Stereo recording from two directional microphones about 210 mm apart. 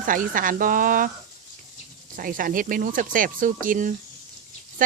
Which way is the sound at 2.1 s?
40° right (ahead or behind).